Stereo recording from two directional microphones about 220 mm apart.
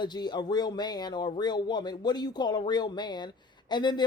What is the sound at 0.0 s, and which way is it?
Speech, 20° left (ahead or behind).